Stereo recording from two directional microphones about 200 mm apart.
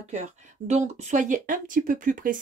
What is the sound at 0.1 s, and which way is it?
Speech, 35° right (ahead or behind).